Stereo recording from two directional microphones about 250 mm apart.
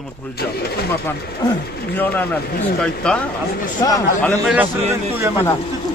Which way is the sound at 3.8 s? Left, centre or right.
Centre.